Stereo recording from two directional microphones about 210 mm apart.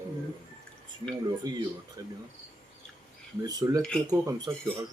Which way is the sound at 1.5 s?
15° right (ahead or behind).